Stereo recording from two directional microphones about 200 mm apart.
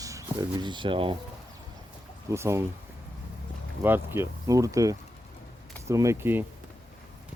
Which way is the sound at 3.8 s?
10° right (ahead or behind).